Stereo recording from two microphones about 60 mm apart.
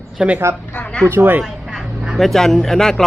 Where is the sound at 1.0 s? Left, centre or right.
Right.